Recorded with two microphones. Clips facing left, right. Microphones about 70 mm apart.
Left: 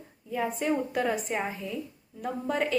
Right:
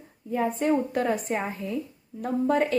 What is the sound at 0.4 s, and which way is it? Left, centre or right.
Speech, right.